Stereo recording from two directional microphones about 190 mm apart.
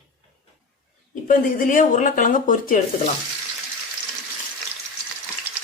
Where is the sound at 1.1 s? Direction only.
45° left (ahead or behind).